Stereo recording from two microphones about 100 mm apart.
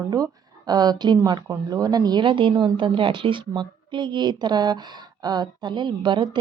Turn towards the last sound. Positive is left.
turn(degrees=-50)  # may be behind; listen again after turning